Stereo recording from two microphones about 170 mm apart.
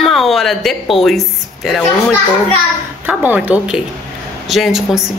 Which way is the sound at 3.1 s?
10° right (ahead or behind).